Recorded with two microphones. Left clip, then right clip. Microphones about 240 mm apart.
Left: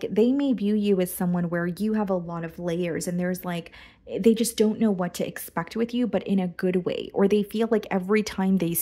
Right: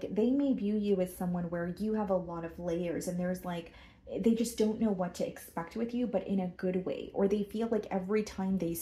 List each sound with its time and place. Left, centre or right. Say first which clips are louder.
0.0 s speech: left 8 dB; left